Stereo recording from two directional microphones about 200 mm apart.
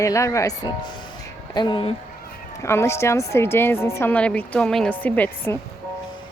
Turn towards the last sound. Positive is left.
turn(degrees=10)  # may be behind; listen again after turning